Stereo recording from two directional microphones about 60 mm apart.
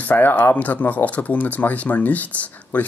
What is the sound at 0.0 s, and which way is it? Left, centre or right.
Speech, left.